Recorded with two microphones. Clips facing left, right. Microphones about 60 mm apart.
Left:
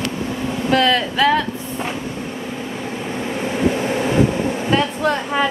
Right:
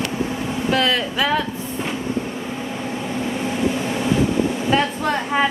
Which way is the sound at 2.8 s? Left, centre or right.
Centre.